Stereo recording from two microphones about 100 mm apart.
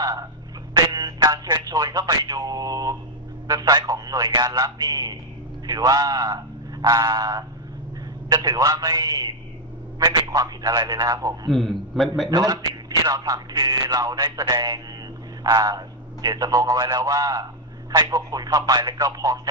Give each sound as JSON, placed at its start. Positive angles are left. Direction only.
{"t": 0.0, "sound": "a sound", "side_deg": -35}
{"t": 0.7, "sound": "speech", "side_deg": -40}
{"t": 11.5, "sound": "a man's voice", "side_deg": 0}
{"t": 12.3, "sound": "speech", "side_deg": -40}